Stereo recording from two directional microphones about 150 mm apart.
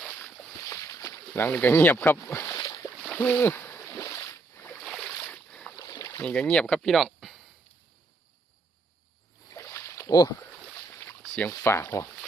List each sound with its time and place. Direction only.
0.0 s boat: 5° left (ahead or behind)
0.6 s boat: 20° left (ahead or behind)
1.3 s speech: 10° left (ahead or behind)
3.0 s boat: 10° left (ahead or behind)
4.8 s boat: 5° left (ahead or behind)
5.8 s boat: 20° left (ahead or behind)
6.2 s speech: 5° left (ahead or behind)
9.5 s rowboat: 20° left (ahead or behind)
10.8 s boat: 15° left (ahead or behind)
11.3 s speech: 15° left (ahead or behind)